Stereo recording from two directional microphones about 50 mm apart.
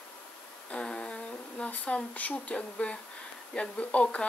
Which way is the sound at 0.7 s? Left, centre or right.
Left.